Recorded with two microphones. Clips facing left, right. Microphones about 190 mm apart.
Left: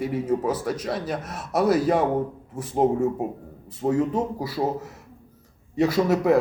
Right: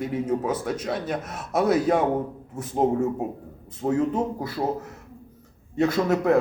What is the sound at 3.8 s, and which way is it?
Speech, centre (ahead or behind).